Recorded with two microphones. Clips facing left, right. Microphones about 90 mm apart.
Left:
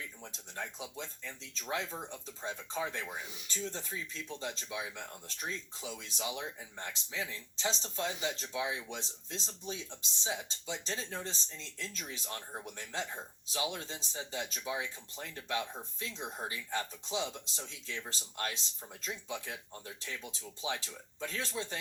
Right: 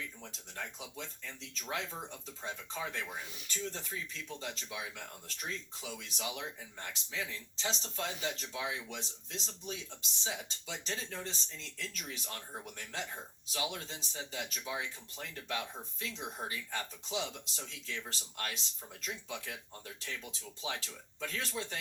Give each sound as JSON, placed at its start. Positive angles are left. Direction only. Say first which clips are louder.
{"t": 0.2, "sound": "speech", "louder": "left 2 dB", "side_deg": 30}